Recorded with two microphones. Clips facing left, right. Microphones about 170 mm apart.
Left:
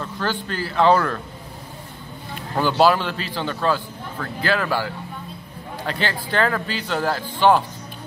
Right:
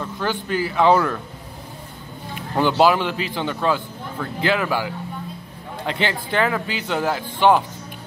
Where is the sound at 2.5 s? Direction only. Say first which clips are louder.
Right 1 dB; 15° right (ahead or behind).